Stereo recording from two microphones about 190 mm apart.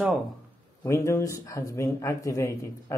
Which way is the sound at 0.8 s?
15° left (ahead or behind).